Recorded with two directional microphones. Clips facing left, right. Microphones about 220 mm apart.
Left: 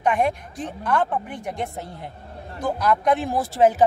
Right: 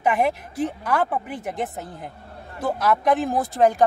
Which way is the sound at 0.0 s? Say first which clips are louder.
Even; 5° right (ahead or behind).